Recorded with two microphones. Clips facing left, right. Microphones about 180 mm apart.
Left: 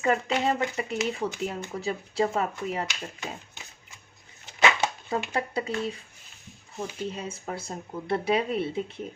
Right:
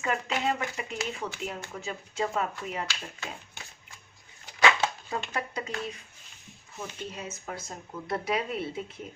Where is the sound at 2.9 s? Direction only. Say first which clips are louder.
Left 3 dB; 20° left (ahead or behind).